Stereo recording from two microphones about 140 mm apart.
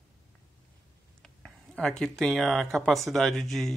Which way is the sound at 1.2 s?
5° left (ahead or behind).